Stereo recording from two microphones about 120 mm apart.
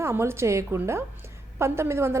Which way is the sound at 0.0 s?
20° right (ahead or behind).